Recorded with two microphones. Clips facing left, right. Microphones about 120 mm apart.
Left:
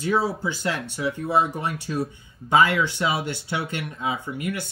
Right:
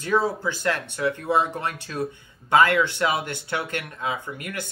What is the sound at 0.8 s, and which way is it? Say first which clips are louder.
Speech: right 2 dB; 55° right (ahead or behind).